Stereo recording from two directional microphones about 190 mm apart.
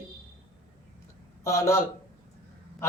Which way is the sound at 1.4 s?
15° left (ahead or behind).